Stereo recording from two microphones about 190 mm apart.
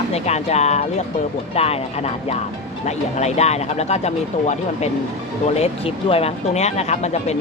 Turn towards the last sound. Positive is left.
turn(degrees=35)  # may be behind; listen again after turning